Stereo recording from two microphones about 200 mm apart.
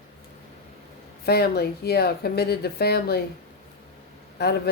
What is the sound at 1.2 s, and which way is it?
Speech, 55° left (ahead or behind).